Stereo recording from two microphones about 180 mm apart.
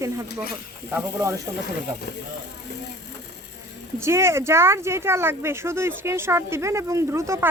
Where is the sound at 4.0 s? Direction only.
15° right (ahead or behind).